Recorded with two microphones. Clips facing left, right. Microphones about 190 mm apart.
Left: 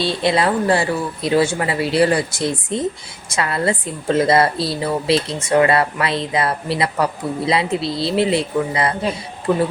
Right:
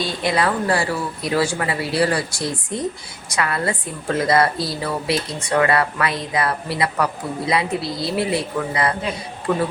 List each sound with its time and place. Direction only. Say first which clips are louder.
0.0 s a woman's voice: left 3 dB; 25° left (ahead or behind)